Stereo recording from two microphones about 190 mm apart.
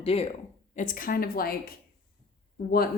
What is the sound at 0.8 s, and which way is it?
Speech, 45° left (ahead or behind).